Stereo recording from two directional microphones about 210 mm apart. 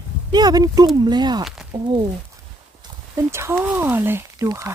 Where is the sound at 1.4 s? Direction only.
Centre (ahead or behind).